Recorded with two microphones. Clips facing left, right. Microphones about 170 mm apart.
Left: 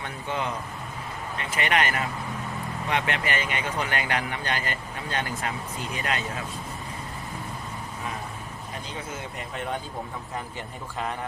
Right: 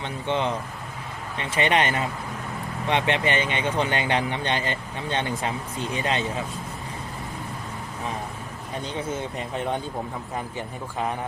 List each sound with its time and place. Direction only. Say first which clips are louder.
0.0 s speech: right 5 dB; 25° right (ahead or behind)